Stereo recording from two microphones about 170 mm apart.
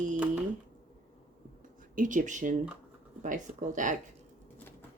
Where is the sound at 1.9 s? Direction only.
50° right (ahead or behind).